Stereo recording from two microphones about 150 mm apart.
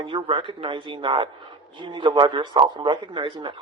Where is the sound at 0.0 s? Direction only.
35° right (ahead or behind).